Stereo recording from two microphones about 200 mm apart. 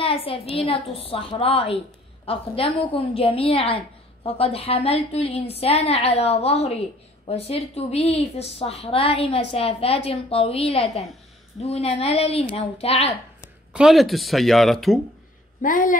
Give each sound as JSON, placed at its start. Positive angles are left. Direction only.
{"t": 0.0, "sound": "a woman's voice", "side_deg": 25}
{"t": 13.7, "sound": "speech", "side_deg": 0}
{"t": 15.6, "sound": "speech", "side_deg": 45}